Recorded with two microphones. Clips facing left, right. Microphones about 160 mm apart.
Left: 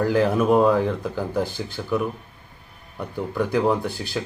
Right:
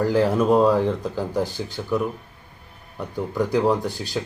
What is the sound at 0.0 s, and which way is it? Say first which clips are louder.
Speech: even; 15° left (ahead or behind).